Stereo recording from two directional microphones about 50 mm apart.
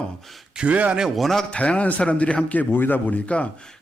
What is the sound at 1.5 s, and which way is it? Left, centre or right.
Speech, left.